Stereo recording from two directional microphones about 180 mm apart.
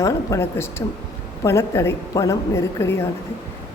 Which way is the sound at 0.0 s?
20° left (ahead or behind).